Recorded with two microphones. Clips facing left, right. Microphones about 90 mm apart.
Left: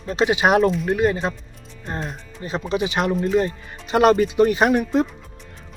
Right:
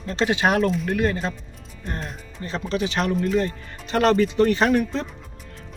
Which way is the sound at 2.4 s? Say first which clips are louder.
Left 2 dB; 15° left (ahead or behind).